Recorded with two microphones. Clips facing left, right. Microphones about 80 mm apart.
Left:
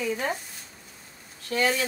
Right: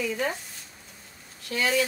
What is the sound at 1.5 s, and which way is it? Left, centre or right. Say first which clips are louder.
Speech: left 1 dB; left.